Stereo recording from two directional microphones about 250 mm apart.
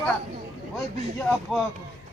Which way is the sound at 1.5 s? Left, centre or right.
Centre.